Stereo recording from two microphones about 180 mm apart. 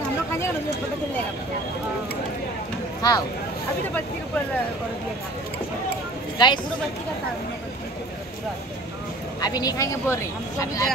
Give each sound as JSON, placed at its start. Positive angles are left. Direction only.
{"t": 3.0, "sound": "speech", "side_deg": 20}
{"t": 6.3, "sound": "speech", "side_deg": 25}
{"t": 9.4, "sound": "speech", "side_deg": 20}